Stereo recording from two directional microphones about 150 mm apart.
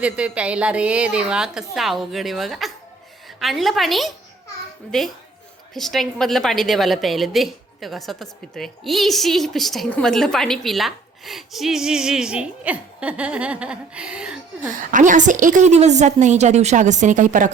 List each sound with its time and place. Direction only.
0.0 s a woman's voice: 10° right (ahead or behind)
14.7 s a woman's voice: 60° right (ahead or behind)